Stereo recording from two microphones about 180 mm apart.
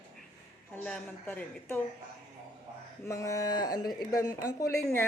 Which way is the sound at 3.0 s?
15° left (ahead or behind).